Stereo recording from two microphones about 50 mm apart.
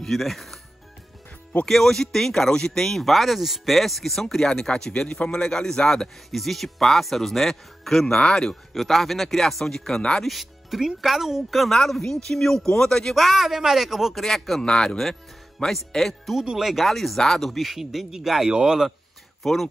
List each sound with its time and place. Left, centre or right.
0.0 s speech: centre
1.7 s speech: centre
8.2 s speech: centre
8.7 s speech: centre
13.1 s speech: centre
14.2 s speech: centre
16.3 s speech: centre
19.4 s speech: centre